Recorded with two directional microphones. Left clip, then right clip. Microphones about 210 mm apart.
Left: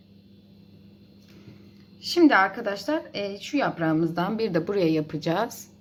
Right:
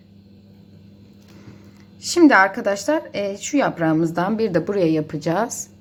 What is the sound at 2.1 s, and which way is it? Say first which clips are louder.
A woman's voice: right 5 dB; 15° right (ahead or behind).